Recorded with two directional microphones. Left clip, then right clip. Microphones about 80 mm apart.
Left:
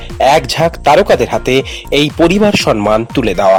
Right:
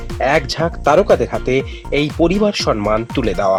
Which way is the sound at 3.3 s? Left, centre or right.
Left.